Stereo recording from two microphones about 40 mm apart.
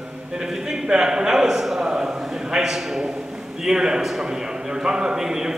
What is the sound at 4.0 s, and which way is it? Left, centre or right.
A man's voice, centre.